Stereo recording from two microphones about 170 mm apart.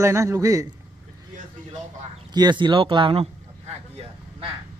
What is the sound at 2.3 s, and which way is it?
Speech, 25° right (ahead or behind).